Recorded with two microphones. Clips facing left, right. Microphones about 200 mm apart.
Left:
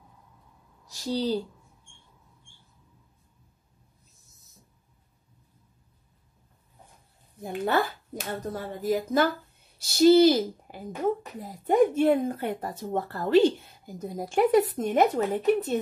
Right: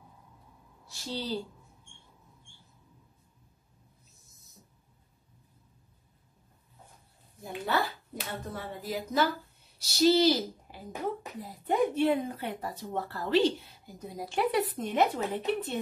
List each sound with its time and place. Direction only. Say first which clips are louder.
0.8 s a woman's voice: left 8 dB; 40° left (ahead or behind)
7.6 s a woman's voice: left 5 dB; 50° left (ahead or behind)